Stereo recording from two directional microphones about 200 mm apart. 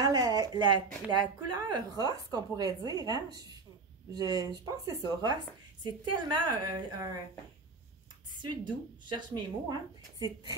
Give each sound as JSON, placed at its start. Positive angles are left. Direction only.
{"t": 0.0, "sound": "speech", "side_deg": -20}
{"t": 8.4, "sound": "speech", "side_deg": -25}